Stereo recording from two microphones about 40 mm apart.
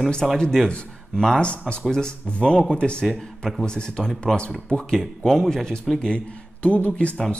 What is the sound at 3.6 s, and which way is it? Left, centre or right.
Speech, left.